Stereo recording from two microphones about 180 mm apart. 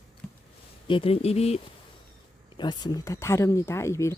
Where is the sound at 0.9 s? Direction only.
30° left (ahead or behind).